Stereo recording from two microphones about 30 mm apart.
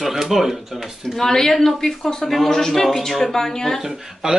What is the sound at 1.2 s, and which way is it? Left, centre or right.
Speech, centre.